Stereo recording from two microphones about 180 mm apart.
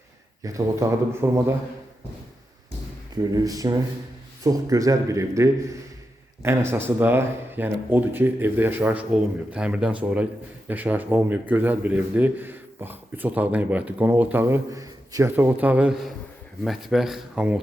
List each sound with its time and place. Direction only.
0.4 s a man's voice: 20° right (ahead or behind)
3.3 s a man's voice: 20° right (ahead or behind)